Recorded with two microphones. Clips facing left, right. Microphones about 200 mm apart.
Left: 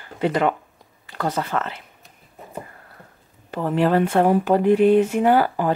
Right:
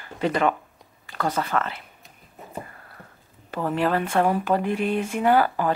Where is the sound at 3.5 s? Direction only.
15° left (ahead or behind).